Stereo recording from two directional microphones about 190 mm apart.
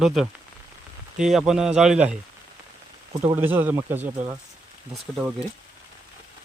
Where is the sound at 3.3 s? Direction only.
10° right (ahead or behind).